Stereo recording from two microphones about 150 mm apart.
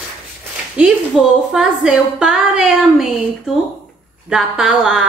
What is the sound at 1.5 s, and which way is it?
A woman's voice, 5° right (ahead or behind).